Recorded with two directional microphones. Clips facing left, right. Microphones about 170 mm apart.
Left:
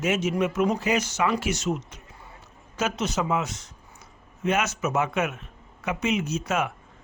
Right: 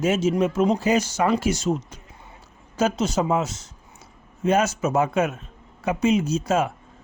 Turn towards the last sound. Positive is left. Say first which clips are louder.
# right 5 dB
turn(degrees=-30)  # may be behind; listen again after turning